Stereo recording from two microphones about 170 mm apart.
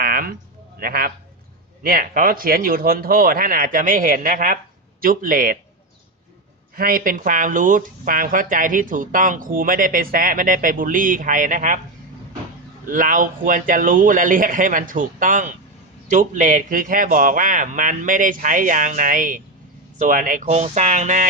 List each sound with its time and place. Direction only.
0.0 s a sound: 60° right (ahead or behind)
0.8 s speech: 60° right (ahead or behind)
6.7 s speech: 60° right (ahead or behind)
12.9 s speech: 50° right (ahead or behind)
20.4 s speech: 40° right (ahead or behind)